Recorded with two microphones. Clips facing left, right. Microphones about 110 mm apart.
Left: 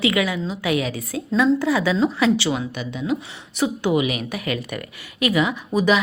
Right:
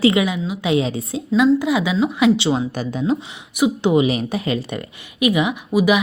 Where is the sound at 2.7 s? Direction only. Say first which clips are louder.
Right 5 dB; 40° right (ahead or behind).